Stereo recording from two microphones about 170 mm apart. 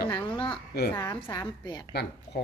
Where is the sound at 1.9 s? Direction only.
75° left (ahead or behind).